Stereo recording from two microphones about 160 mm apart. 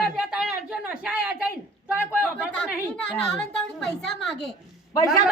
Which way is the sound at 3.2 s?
5° left (ahead or behind).